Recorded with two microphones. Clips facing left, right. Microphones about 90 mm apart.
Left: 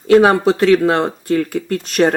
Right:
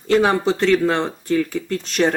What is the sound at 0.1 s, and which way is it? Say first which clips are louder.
Speech: left 6 dB; 60° left (ahead or behind).